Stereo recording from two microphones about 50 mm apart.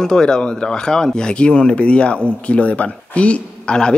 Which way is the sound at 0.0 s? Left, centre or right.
Centre.